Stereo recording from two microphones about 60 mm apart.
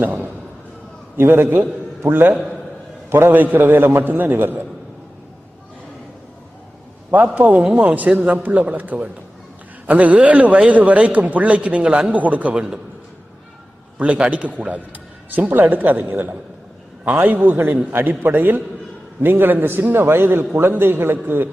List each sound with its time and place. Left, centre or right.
0.0 s a sound: right
1.1 s a man's voice: right
7.3 s a man's voice: right
14.0 s a man's voice: right